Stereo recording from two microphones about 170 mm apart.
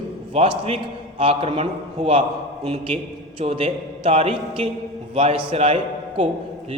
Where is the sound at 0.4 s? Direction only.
35° right (ahead or behind).